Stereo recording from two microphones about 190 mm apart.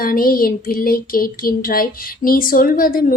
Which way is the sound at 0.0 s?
50° left (ahead or behind).